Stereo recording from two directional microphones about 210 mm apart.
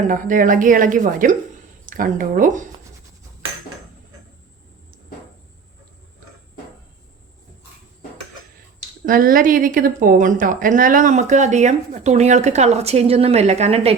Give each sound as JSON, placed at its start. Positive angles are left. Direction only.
{"t": 0.0, "sound": "speech", "side_deg": -40}
{"t": 9.0, "sound": "speech", "side_deg": -40}